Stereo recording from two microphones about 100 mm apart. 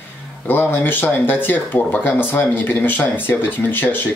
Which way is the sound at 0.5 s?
20° left (ahead or behind).